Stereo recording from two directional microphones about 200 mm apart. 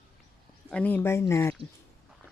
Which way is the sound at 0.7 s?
10° left (ahead or behind).